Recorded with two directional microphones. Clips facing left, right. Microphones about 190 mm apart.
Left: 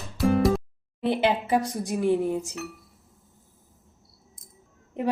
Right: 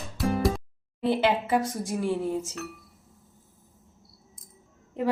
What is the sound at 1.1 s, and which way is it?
Speech, 20° left (ahead or behind).